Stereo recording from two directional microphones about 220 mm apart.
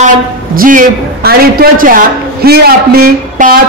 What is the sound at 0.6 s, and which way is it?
Speech, 40° right (ahead or behind).